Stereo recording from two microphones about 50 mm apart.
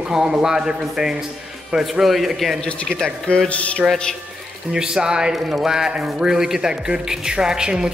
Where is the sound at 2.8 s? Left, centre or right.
Centre.